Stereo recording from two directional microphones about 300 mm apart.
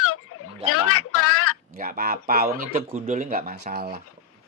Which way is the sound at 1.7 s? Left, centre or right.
Right.